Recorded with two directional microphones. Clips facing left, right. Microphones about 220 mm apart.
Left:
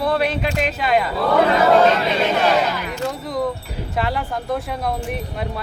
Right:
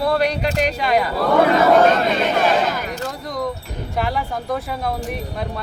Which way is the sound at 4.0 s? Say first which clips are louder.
Even; centre (ahead or behind).